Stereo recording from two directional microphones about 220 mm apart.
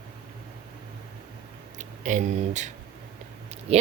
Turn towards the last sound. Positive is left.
turn(degrees=-30)  # may be behind; listen again after turning